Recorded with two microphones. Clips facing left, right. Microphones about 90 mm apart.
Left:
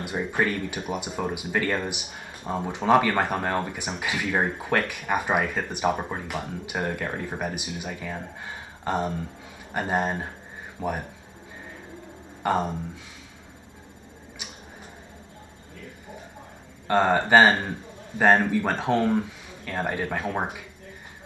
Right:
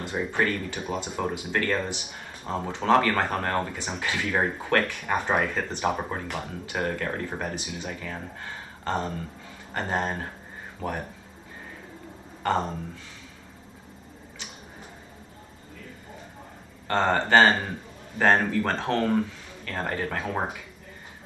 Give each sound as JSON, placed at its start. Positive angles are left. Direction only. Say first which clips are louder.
{"t": 0.0, "sound": "speech", "louder": "left 1 dB", "side_deg": 10}
{"t": 12.4, "sound": "speech", "louder": "left 1 dB", "side_deg": 15}
{"t": 16.8, "sound": "speech", "louder": "left 3 dB", "side_deg": 10}